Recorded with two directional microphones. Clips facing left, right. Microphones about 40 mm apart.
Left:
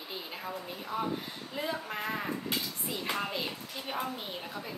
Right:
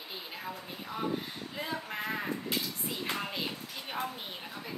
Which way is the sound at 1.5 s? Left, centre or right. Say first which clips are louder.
Left 2 dB; centre.